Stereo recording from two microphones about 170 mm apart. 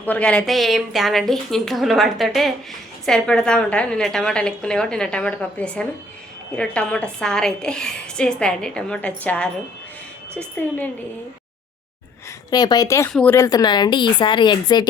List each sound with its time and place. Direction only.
0.0 s a woman's voice: 10° left (ahead or behind)
12.5 s a woman's voice: 25° left (ahead or behind)